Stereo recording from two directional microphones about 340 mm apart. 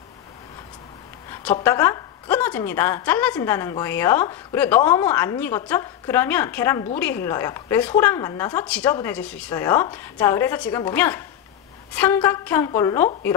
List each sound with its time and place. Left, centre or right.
1.3 s a woman's voice: centre